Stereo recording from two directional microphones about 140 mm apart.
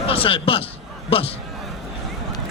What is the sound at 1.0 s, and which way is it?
Speech, 40° left (ahead or behind).